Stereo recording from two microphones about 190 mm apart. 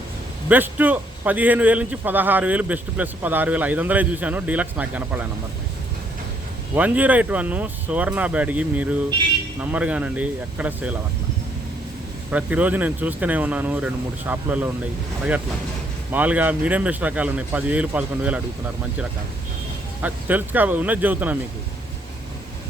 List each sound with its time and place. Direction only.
0.4 s a man's voice: 10° right (ahead or behind)
6.7 s a man's voice: 10° right (ahead or behind)
12.3 s a man's voice: 5° right (ahead or behind)
16.1 s a man's voice: 10° right (ahead or behind)
20.0 s a man's voice: 10° right (ahead or behind)